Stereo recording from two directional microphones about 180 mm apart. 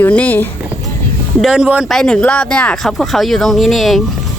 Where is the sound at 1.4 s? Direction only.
5° right (ahead or behind).